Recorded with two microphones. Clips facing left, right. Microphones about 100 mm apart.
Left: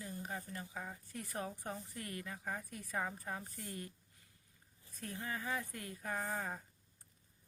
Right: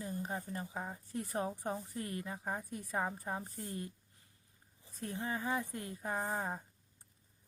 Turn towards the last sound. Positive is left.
turn(degrees=-25)  # may be behind; listen again after turning